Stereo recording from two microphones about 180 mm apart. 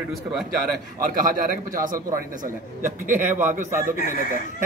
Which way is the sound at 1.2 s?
50° right (ahead or behind).